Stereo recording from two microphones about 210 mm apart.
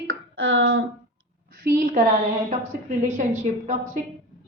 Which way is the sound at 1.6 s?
40° right (ahead or behind).